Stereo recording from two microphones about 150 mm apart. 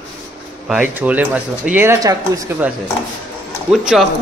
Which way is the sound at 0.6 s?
10° right (ahead or behind).